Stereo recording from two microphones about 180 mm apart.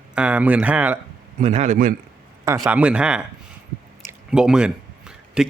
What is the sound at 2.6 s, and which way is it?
Speech, 5° right (ahead or behind).